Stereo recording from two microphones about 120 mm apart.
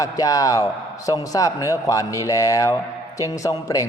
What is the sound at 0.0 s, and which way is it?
A man's voice, 30° left (ahead or behind).